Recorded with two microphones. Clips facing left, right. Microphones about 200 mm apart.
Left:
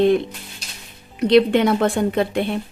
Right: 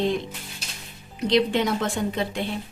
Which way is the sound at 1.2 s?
60° left (ahead or behind).